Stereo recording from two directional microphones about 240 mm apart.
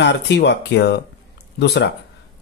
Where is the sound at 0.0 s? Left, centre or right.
Left.